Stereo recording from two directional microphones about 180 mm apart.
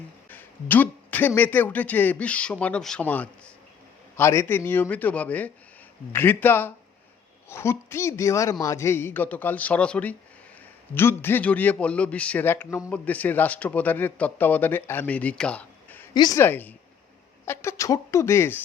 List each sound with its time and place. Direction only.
0.3 s a man's voice: 10° left (ahead or behind)
16.1 s a woman's voice: 25° left (ahead or behind)
16.4 s a man's voice: 10° left (ahead or behind)